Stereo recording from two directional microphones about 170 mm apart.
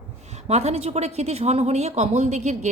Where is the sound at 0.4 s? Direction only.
40° right (ahead or behind).